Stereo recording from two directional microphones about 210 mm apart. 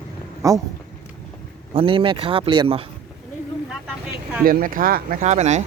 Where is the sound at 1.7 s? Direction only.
25° right (ahead or behind).